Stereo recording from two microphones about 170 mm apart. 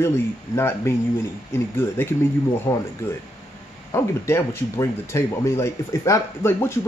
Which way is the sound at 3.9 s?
15° left (ahead or behind).